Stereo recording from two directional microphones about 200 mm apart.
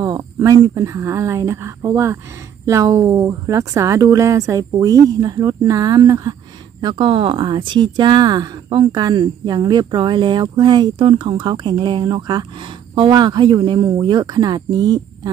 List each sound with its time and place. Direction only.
0.0 s speech: 15° right (ahead or behind)